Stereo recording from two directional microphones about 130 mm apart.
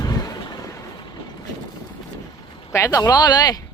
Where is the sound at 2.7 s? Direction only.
25° left (ahead or behind).